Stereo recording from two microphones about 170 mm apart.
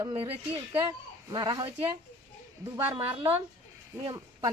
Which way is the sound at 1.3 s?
25° right (ahead or behind).